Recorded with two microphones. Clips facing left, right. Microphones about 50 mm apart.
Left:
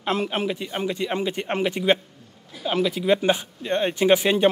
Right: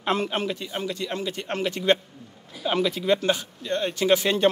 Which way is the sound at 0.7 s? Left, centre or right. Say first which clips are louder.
Left 5 dB; left.